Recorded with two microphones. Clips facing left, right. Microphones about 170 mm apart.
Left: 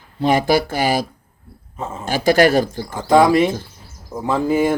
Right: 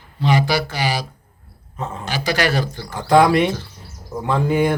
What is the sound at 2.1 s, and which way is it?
Speech, 50° left (ahead or behind).